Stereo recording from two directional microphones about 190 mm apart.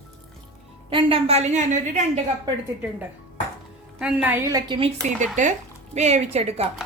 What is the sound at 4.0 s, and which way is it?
Speech, 5° right (ahead or behind).